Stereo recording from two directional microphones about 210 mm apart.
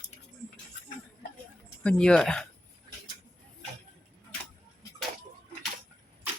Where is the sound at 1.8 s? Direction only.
5° left (ahead or behind).